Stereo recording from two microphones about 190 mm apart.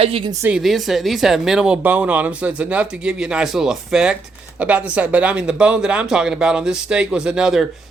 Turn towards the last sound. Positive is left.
turn(degrees=-5)  # may be behind; listen again after turning